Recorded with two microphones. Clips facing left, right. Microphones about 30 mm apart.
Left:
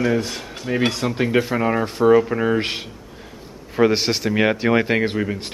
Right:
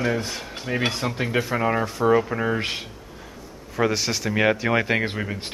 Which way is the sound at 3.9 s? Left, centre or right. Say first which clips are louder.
Left 5 dB; left.